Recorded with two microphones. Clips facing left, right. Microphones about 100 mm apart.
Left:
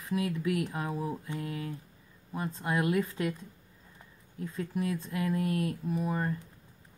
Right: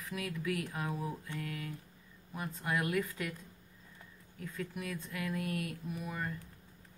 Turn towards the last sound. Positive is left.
turn(degrees=35)  # may be behind; listen again after turning